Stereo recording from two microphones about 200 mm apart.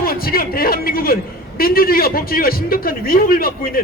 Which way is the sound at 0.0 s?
50° left (ahead or behind).